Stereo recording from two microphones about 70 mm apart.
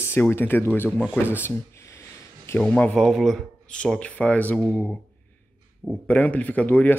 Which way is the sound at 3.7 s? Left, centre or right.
Centre.